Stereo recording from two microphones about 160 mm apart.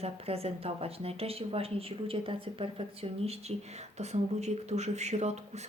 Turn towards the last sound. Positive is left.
turn(degrees=-45)  # may be behind; listen again after turning